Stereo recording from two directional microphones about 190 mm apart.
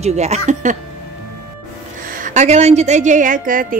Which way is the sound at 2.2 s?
35° right (ahead or behind).